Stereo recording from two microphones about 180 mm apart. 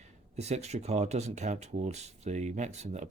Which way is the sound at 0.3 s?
40° right (ahead or behind).